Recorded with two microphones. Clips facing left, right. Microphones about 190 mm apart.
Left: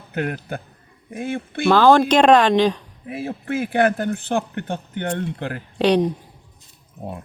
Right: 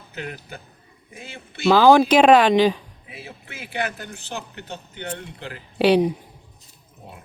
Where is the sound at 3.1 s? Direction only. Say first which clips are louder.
Left 15 dB; 50° left (ahead or behind).